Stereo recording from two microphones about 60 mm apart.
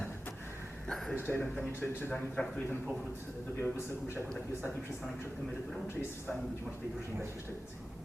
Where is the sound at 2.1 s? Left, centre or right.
Centre.